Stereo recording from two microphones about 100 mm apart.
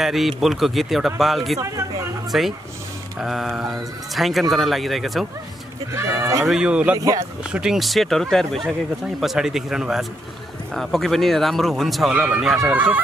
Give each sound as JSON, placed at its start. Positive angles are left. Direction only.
{"t": 0.0, "sound": "speech", "side_deg": 0}
{"t": 5.9, "sound": "speech", "side_deg": -30}
{"t": 6.4, "sound": "speech", "side_deg": -5}
{"t": 12.1, "sound": "speech", "side_deg": -15}